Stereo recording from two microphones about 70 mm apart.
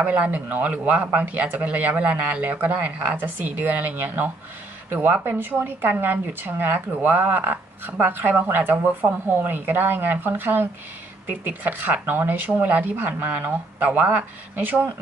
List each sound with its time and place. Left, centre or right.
0.0 s speech: right